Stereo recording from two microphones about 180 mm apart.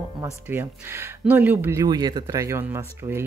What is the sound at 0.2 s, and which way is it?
Speech, 15° right (ahead or behind).